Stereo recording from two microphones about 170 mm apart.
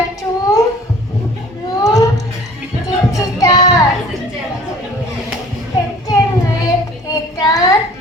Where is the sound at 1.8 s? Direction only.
20° left (ahead or behind).